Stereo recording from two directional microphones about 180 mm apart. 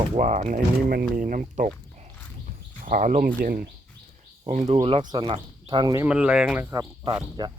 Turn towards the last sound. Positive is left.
turn(degrees=-25)  # may be behind; listen again after turning